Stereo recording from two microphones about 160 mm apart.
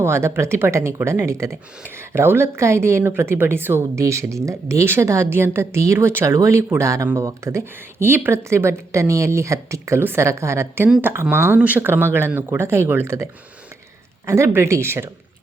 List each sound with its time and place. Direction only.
0.0 s speech: 15° right (ahead or behind)
14.3 s speech: 15° right (ahead or behind)